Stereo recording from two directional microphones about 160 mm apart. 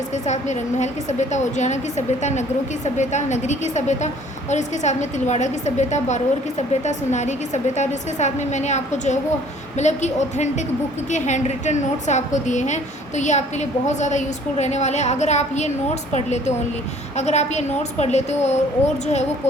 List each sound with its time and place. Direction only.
0.1 s a woman's voice: 45° left (ahead or behind)
17.2 s a woman's voice: 45° left (ahead or behind)